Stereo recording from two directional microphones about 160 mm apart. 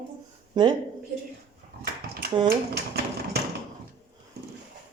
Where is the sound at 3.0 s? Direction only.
80° right.